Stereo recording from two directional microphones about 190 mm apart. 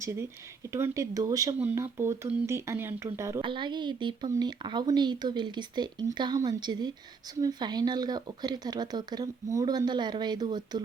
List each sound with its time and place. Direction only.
0.0 s speech: 15° right (ahead or behind)
3.4 s speech: 25° right (ahead or behind)